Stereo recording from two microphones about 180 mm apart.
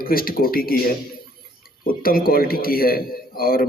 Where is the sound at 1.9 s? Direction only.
55° left (ahead or behind).